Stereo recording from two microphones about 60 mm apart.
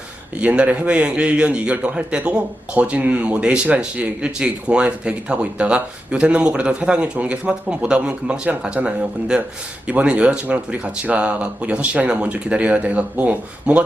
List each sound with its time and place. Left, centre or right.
0.3 s a man's voice: right
13.7 s speech: centre